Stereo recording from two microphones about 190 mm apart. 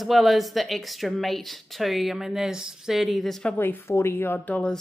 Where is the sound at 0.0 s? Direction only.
Centre (ahead or behind).